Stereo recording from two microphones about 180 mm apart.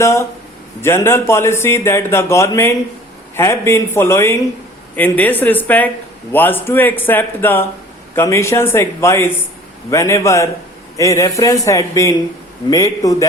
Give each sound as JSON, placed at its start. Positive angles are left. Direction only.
{"t": 0.0, "sound": "a man's voice", "side_deg": 15}